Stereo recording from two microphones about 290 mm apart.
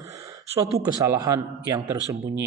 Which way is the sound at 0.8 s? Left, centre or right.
Centre.